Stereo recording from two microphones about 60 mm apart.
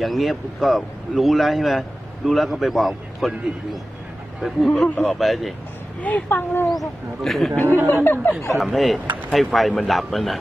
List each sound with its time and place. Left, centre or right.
0.0 s speech: centre
4.8 s speech: left
5.2 s speech: centre
5.9 s speech: left
6.2 s speech: left
7.2 s speech: centre
7.6 s speech: right
7.9 s speech: left
8.3 s speech: centre